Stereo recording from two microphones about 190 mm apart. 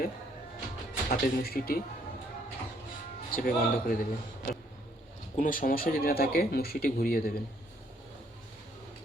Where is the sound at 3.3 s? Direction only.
50° left (ahead or behind).